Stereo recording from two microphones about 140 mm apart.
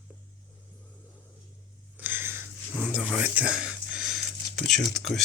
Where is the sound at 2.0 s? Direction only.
15° right (ahead or behind).